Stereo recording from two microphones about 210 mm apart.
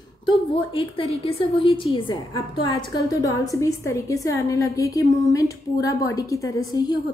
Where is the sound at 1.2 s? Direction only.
25° left (ahead or behind).